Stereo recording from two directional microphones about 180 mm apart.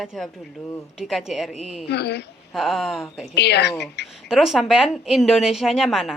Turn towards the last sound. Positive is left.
turn(degrees=0)  # may be behind; listen again after turning